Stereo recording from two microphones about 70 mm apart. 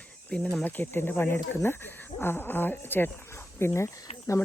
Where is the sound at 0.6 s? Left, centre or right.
Left.